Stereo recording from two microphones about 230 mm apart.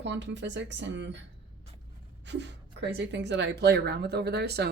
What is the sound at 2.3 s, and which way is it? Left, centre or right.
Speech, right.